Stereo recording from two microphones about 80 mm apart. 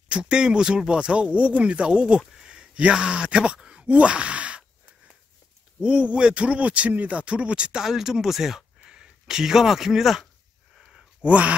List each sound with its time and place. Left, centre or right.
0.1 s speech: centre
10.8 s a sound: centre
11.2 s speech: centre